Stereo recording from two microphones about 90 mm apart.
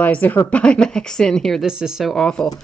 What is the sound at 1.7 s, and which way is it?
Speech, 5° right (ahead or behind).